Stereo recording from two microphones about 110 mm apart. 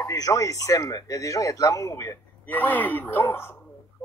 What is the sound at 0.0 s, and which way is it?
Speech, 35° left (ahead or behind).